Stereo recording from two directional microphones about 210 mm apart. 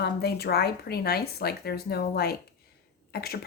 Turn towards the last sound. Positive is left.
turn(degrees=45)  # may be behind; listen again after turning